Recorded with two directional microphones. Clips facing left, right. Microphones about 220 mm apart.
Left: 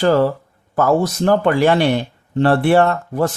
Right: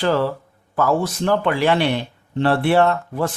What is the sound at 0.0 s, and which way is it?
Speech, 45° left (ahead or behind).